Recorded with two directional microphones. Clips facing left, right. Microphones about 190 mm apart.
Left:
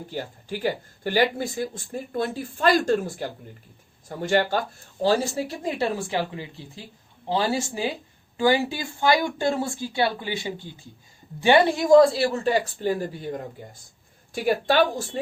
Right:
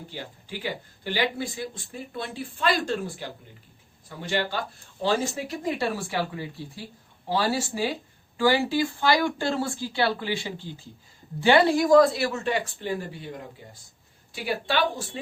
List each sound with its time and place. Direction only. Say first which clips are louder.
0.1 s speech: left 8 dB; 45° left (ahead or behind)
5.0 s speech: left 3 dB; 30° left (ahead or behind)